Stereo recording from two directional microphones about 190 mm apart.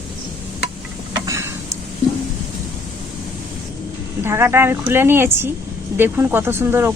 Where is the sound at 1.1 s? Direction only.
15° right (ahead or behind).